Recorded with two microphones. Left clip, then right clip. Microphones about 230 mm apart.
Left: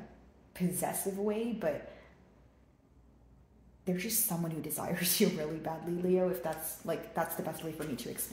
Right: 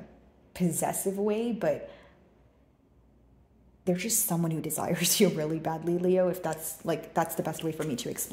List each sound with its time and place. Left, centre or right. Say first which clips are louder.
0.5 s a woman's voice: right 5 dB; right
3.8 s a woman's voice: right 6 dB; right